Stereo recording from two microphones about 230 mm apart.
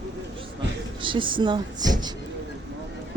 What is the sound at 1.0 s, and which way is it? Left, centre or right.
Speech, right.